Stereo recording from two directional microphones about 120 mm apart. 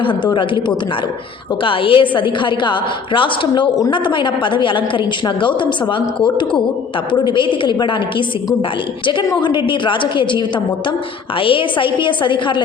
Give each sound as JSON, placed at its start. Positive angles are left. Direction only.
{"t": 0.0, "sound": "a woman's voice", "side_deg": 45}
{"t": 1.6, "sound": "a woman's voice", "side_deg": 45}
{"t": 7.1, "sound": "a woman's voice", "side_deg": 40}
{"t": 9.2, "sound": "a woman's voice", "side_deg": 40}